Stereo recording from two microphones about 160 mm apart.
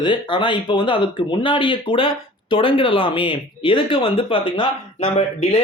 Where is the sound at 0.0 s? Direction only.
30° left (ahead or behind).